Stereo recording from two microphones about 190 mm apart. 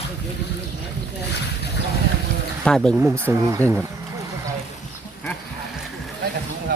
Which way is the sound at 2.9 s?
10° right (ahead or behind).